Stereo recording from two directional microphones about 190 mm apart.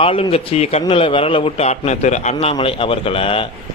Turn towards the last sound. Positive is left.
turn(degrees=30)  # may be behind; listen again after turning